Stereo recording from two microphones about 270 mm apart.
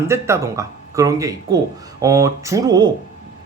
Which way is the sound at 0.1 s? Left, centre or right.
Centre.